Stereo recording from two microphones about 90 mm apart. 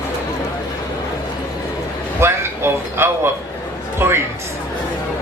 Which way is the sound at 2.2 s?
30° right (ahead or behind).